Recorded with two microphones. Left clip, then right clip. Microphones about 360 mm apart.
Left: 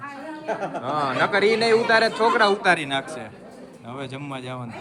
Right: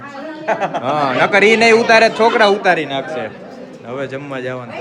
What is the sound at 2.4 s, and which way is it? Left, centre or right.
A man's voice, centre.